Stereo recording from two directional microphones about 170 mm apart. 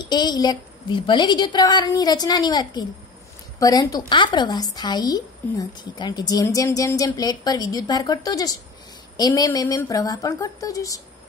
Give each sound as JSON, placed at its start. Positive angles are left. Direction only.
{"t": 0.0, "sound": "a woman's voice", "side_deg": 25}